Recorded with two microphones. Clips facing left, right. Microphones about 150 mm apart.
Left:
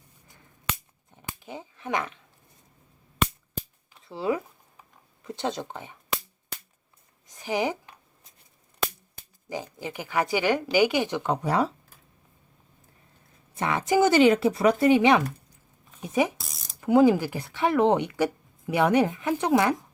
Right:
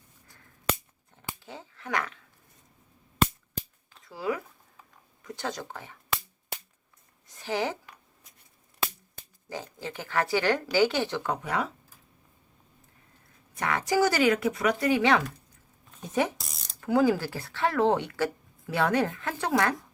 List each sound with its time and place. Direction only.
1.1 s a sound: 15° left (ahead or behind)
4.0 s speech: 25° left (ahead or behind)
7.3 s a woman's voice: 15° left (ahead or behind)
9.5 s speech: 15° left (ahead or behind)
11.4 s speech: 35° left (ahead or behind)
13.5 s speech: 25° left (ahead or behind)
16.4 s mechanisms: centre (ahead or behind)
16.8 s speech: 20° left (ahead or behind)